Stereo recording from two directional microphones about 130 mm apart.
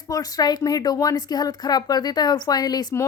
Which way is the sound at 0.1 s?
30° left (ahead or behind).